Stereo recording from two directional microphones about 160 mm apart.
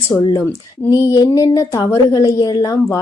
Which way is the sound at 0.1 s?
20° left (ahead or behind).